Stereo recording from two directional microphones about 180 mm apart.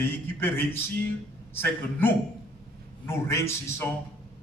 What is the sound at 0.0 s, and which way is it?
A man's voice, 10° left (ahead or behind).